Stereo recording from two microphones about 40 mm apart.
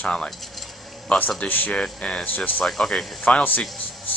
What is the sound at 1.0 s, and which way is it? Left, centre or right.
A man's voice, left.